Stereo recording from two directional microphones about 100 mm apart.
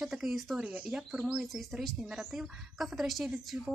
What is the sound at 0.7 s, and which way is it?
Speech, 15° right (ahead or behind).